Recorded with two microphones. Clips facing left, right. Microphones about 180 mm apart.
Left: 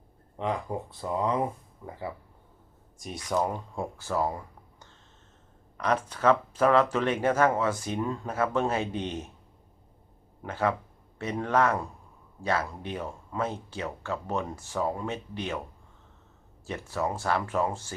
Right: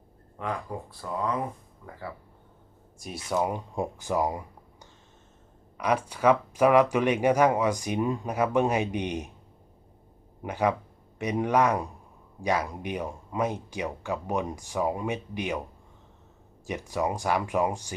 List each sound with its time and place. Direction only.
0.3 s speech: 25° left (ahead or behind)
3.2 s speech: 10° right (ahead or behind)
10.4 s speech: 15° right (ahead or behind)
16.6 s speech: 15° right (ahead or behind)